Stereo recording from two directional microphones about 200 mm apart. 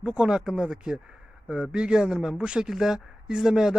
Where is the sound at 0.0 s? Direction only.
5° right (ahead or behind).